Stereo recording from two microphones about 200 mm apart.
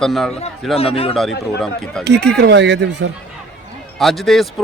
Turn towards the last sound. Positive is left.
turn(degrees=0)  # may be behind; listen again after turning